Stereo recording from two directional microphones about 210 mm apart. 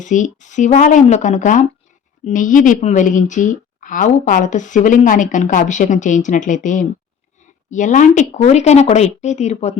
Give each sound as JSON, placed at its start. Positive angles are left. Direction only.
{"t": 0.0, "sound": "a woman's voice", "side_deg": 35}